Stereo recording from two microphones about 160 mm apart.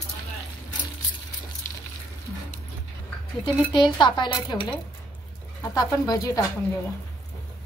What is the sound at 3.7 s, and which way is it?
Speech, 30° left (ahead or behind).